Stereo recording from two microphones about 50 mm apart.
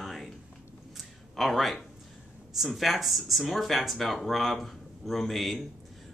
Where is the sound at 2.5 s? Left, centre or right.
Centre.